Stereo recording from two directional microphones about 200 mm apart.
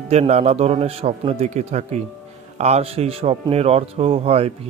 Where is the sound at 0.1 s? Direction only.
35° right (ahead or behind).